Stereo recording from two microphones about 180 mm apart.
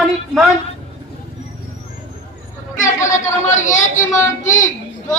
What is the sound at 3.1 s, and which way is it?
Chatter, 15° left (ahead or behind).